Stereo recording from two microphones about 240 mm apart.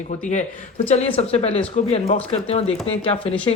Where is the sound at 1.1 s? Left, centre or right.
Left.